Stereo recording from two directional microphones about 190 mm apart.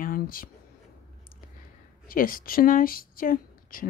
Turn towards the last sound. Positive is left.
turn(degrees=50)  # may be behind; listen again after turning